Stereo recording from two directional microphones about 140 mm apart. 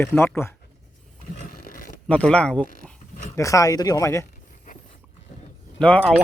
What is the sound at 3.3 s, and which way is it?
Speech, 25° left (ahead or behind).